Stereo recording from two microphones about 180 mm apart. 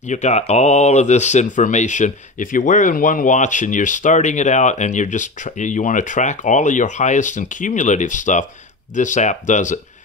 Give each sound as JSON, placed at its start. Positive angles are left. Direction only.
{"t": 0.0, "sound": "speech", "side_deg": 40}